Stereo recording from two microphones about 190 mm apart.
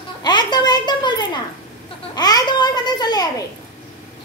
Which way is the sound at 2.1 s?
20° left (ahead or behind).